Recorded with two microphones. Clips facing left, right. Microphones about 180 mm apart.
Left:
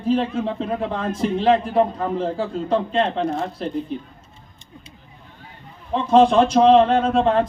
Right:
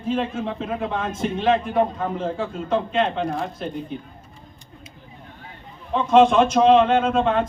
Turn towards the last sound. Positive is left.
turn(degrees=35)  # may be behind; listen again after turning